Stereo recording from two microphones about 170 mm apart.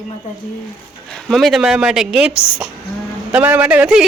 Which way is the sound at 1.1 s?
Centre (ahead or behind).